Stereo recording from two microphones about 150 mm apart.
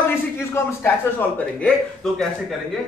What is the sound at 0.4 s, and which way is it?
Speech, 15° left (ahead or behind).